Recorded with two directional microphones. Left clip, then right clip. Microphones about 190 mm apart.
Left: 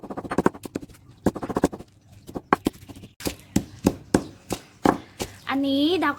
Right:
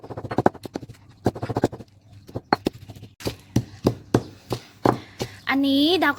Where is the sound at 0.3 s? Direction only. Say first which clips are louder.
Right 3 dB; 10° right (ahead or behind).